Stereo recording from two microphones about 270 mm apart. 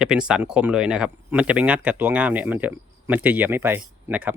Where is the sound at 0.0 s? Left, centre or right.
Centre.